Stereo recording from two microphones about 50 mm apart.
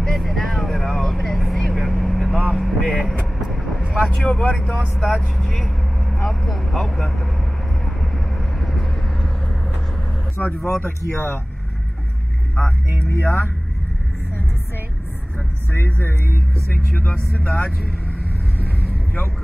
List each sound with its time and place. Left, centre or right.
0.0 s vehicle: centre
2.3 s vehicle: centre
2.6 s vehicle: centre
3.9 s speech: centre
4.3 s speech: left
5.0 s speech: centre
7.8 s vehicle: centre
10.4 s speech: left
11.1 s speech: left
12.9 s speech: left
15.7 s speech: left
16.9 s speech: left
18.6 s vehicle: left